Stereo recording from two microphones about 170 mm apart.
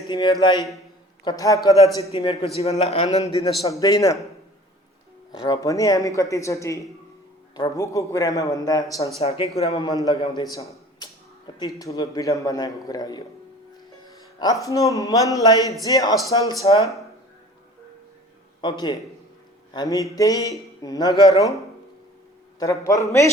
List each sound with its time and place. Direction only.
0.1 s a man's voice: 25° left (ahead or behind)
2.4 s a man's voice: 35° left (ahead or behind)
3.7 s a man's voice: 20° left (ahead or behind)
5.4 s a man's voice: 20° left (ahead or behind)
9.1 s a man's voice: 35° left (ahead or behind)
10.2 s a man's voice: 25° left (ahead or behind)
11.6 s a man's voice: 20° left (ahead or behind)
14.3 s a man's voice: 20° left (ahead or behind)
18.6 s a man's voice: 25° left (ahead or behind)
22.5 s a man's voice: 20° left (ahead or behind)